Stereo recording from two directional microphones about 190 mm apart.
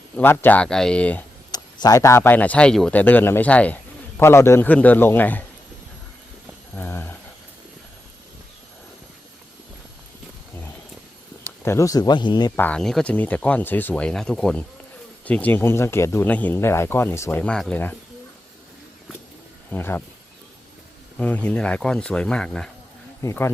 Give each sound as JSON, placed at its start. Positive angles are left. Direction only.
{"t": 0.2, "sound": "speech", "side_deg": 10}
{"t": 1.5, "sound": "speech", "side_deg": 20}
{"t": 6.7, "sound": "speech", "side_deg": 10}
{"t": 11.6, "sound": "speech", "side_deg": 15}
{"t": 12.5, "sound": "speech", "side_deg": 5}
{"t": 19.7, "sound": "speech", "side_deg": 10}
{"t": 21.2, "sound": "speech", "side_deg": 5}